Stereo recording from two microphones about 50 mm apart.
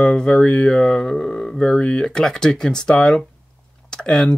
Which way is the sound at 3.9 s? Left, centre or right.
Centre.